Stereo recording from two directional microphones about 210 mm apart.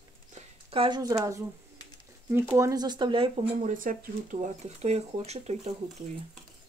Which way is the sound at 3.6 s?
40° right (ahead or behind).